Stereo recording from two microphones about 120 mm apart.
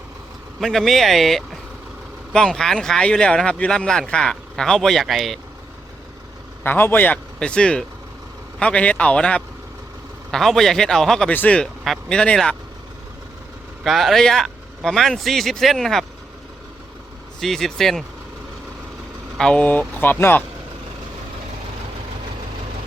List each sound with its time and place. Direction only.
0.6 s speech: centre (ahead or behind)
6.6 s speech: 15° left (ahead or behind)
13.8 s speech: centre (ahead or behind)
17.4 s speech: centre (ahead or behind)
19.4 s speech: 10° left (ahead or behind)